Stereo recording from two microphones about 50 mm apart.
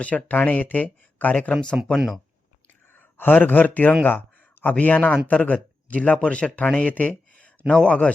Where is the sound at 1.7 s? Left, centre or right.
Right.